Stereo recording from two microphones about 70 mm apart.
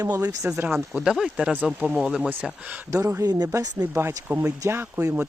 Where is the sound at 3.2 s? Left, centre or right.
Right.